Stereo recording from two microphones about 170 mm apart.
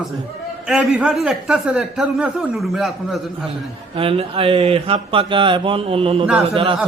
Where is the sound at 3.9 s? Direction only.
35° right (ahead or behind).